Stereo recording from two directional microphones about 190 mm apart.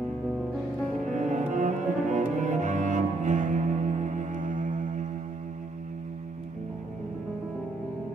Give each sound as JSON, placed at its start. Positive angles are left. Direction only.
{"t": 1.1, "sound": "cello", "side_deg": -40}